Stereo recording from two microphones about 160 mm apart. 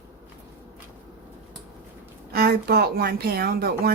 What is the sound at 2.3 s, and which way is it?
Speech, 75° right (ahead or behind).